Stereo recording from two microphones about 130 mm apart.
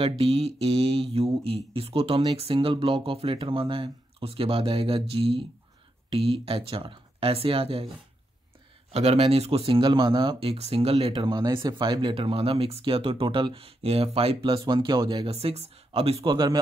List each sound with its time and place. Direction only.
0.2 s speech: 50° right (ahead or behind)
8.9 s speech: 50° right (ahead or behind)
11.1 s speech: 35° right (ahead or behind)
15.2 s speech: 50° right (ahead or behind)